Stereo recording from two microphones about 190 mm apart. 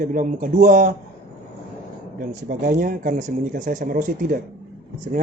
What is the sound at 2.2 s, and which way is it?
Speech, 50° right (ahead or behind).